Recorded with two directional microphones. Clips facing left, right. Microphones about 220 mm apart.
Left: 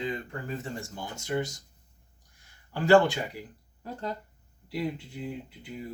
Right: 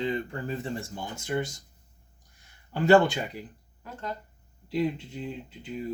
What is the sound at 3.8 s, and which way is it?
Speech, 35° left (ahead or behind).